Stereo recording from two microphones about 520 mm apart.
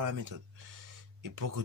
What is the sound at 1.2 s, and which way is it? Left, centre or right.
Speech, right.